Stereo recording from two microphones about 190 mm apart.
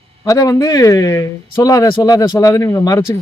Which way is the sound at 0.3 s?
15° left (ahead or behind).